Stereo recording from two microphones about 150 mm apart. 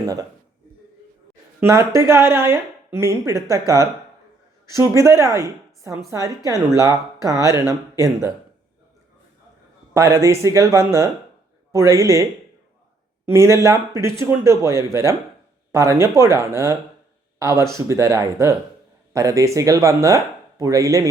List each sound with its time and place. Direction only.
1.6 s speech: 20° right (ahead or behind)
9.9 s speech: 20° right (ahead or behind)
13.2 s speech: 20° right (ahead or behind)